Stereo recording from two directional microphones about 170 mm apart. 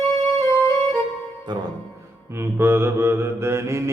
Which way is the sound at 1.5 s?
25° right (ahead or behind).